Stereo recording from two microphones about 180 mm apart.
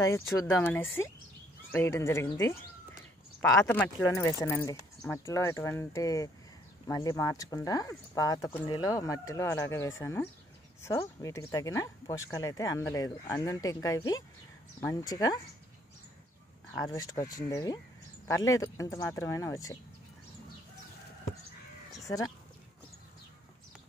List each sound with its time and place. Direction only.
0.0 s speech: 15° left (ahead or behind)
3.3 s speech: 15° left (ahead or behind)
16.7 s speech: 20° left (ahead or behind)
22.0 s speech: 20° left (ahead or behind)